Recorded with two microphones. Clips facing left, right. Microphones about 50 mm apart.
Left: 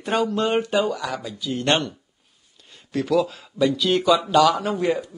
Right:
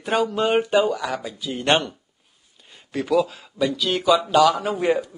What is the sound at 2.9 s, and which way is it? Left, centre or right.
Speech, centre.